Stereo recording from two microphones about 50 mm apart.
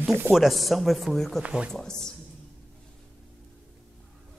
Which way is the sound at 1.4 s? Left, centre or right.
Right.